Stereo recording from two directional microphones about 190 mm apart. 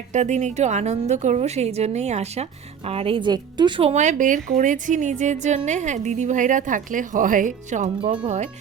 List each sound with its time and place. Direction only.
0.1 s a woman's voice: 40° right (ahead or behind)